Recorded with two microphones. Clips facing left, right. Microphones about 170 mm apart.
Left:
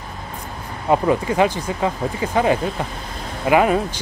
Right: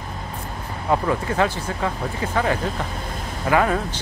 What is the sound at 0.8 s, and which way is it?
Speech, 20° left (ahead or behind).